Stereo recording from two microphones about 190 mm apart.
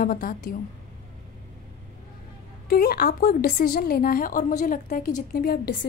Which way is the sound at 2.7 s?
50° left (ahead or behind).